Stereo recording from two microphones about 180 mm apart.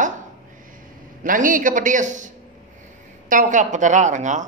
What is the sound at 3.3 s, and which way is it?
A woman's voice, 45° right (ahead or behind).